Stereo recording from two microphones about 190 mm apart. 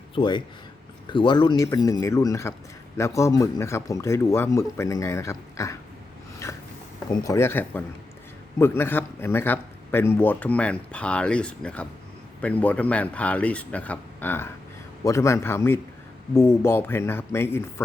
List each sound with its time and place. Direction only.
0.1 s speech: 25° left (ahead or behind)
6.4 s a sound: 15° left (ahead or behind)
7.3 s speech: 15° left (ahead or behind)